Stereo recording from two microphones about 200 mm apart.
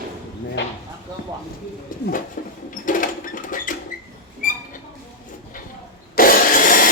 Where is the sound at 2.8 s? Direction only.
40° left (ahead or behind).